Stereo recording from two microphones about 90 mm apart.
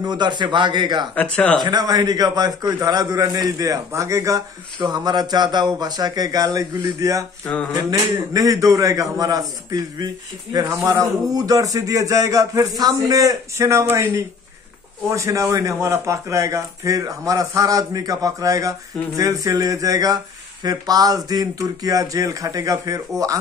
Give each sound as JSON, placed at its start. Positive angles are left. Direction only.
{"t": 0.0, "sound": "a man's voice", "side_deg": -55}
{"t": 1.1, "sound": "speech", "side_deg": 15}
{"t": 1.6, "sound": "a man's voice", "side_deg": -50}
{"t": 4.7, "sound": "a man's voice", "side_deg": -50}